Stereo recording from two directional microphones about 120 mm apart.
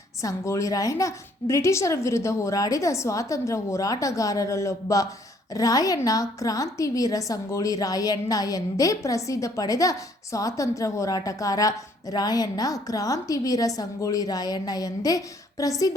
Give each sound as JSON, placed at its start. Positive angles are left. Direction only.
{"t": 0.2, "sound": "a woman's voice", "side_deg": 25}